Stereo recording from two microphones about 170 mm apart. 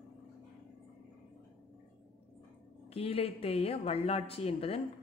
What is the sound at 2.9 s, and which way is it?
A woman's voice, 35° left (ahead or behind).